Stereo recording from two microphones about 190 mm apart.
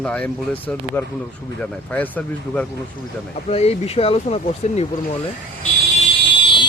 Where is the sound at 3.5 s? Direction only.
35° left (ahead or behind).